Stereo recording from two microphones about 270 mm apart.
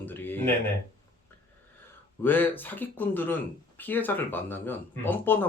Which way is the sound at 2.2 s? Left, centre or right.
Centre.